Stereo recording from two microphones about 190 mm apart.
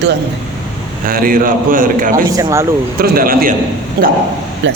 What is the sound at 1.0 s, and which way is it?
A man's voice, 50° right (ahead or behind).